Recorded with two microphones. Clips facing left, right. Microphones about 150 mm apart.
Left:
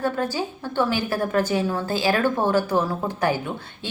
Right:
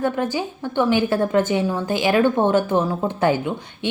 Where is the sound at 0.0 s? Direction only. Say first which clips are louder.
Right 2 dB; 20° right (ahead or behind).